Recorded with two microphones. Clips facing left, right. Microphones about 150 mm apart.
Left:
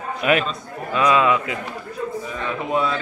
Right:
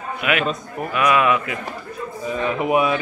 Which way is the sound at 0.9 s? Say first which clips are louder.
Even; 25° left (ahead or behind).